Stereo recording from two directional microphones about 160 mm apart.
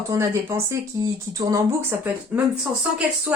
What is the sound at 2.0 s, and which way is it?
Speech, 10° right (ahead or behind).